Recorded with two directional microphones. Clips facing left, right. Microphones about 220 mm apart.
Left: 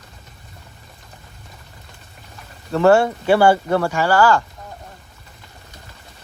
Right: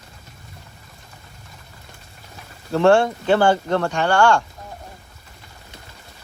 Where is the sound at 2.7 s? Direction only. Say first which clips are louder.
Left 1 dB; centre (ahead or behind).